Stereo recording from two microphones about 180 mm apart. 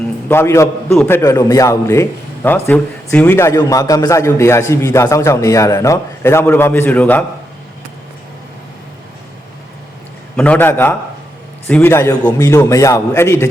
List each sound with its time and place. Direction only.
0.3 s a man's voice: 15° left (ahead or behind)
10.3 s a man's voice: 10° left (ahead or behind)